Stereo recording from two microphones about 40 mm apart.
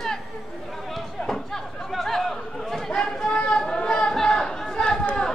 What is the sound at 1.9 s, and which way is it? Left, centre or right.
Chatter, centre.